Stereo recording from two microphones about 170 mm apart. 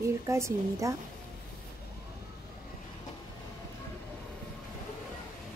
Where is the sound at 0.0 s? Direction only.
15° right (ahead or behind).